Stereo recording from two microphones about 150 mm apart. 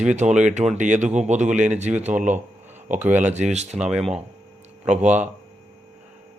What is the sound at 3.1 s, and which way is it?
Speech, 50° right (ahead or behind).